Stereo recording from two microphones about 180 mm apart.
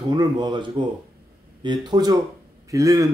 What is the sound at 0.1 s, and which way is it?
Speech, 25° right (ahead or behind).